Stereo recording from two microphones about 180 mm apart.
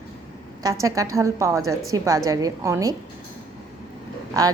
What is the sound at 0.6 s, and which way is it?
A woman's voice, 20° right (ahead or behind).